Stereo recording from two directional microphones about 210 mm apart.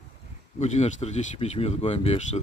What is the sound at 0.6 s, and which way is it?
Speech, 35° left (ahead or behind).